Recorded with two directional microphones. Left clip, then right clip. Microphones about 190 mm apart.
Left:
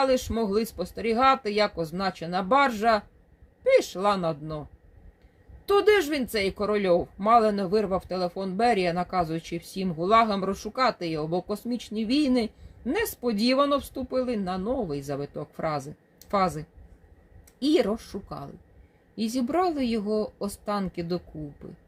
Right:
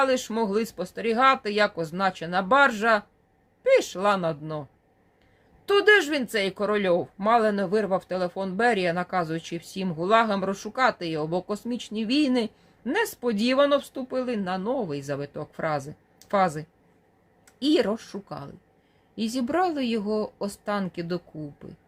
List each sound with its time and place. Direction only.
0.0 s speech: 10° right (ahead or behind)
5.6 s speech: 10° right (ahead or behind)